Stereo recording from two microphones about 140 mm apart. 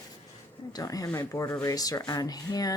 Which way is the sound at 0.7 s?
25° left (ahead or behind).